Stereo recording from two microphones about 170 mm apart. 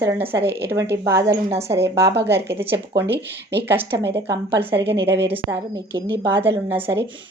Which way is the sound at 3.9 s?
90° right.